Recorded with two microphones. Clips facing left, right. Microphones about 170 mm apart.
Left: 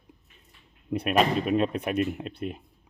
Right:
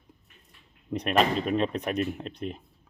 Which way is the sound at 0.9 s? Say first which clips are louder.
Left 1 dB; 10° left (ahead or behind).